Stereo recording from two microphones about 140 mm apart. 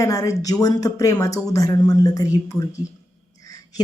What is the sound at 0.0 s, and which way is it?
A woman's voice, 25° left (ahead or behind).